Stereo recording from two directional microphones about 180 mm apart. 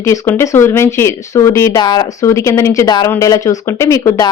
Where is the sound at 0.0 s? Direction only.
15° left (ahead or behind).